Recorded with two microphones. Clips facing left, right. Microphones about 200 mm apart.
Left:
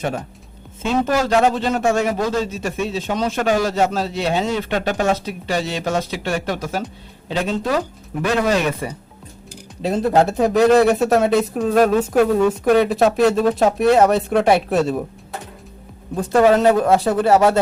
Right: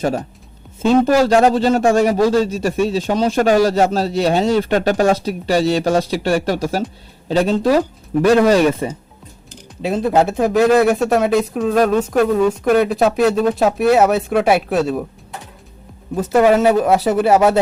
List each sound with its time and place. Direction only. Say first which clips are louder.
0.8 s a man's voice: right 6 dB; 35° right (ahead or behind)
9.8 s speech: right 1 dB; centre (ahead or behind)
16.3 s speech: right 1 dB; 10° right (ahead or behind)